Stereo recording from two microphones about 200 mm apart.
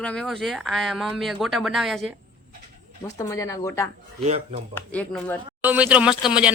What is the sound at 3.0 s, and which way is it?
Speech, 15° left (ahead or behind).